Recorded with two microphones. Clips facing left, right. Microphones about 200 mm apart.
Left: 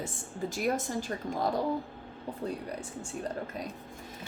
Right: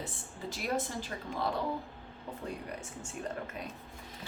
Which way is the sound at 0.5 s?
45° left (ahead or behind).